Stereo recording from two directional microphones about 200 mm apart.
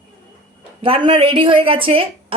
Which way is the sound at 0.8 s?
25° right (ahead or behind).